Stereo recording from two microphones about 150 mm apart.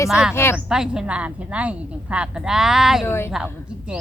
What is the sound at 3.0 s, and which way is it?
Speech, 15° left (ahead or behind).